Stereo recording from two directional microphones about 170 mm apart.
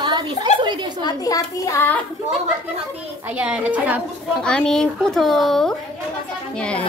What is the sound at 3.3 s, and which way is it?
Speech, 10° right (ahead or behind).